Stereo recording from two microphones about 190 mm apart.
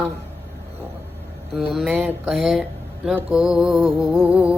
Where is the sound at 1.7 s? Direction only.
Centre (ahead or behind).